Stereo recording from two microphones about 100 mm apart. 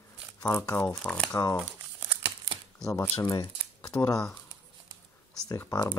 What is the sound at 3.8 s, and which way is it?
Speech, 35° left (ahead or behind).